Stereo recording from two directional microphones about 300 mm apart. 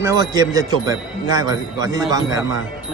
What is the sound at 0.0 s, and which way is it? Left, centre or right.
A man's voice, centre.